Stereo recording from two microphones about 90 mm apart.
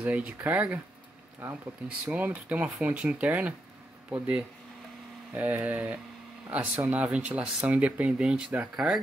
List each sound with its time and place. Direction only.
0.0 s speech: 15° right (ahead or behind)